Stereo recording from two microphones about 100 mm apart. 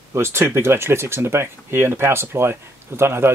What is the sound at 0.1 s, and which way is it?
Speech, 25° right (ahead or behind).